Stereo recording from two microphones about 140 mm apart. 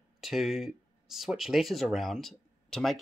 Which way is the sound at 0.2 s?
Centre (ahead or behind).